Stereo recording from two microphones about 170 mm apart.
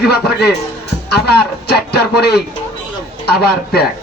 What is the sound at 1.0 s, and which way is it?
Music, 70° left (ahead or behind).